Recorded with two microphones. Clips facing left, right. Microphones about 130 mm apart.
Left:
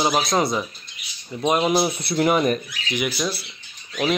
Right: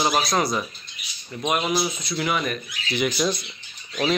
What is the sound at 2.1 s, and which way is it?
Speech, 40° left (ahead or behind).